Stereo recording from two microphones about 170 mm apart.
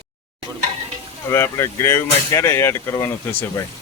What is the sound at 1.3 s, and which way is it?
Speech, 15° left (ahead or behind).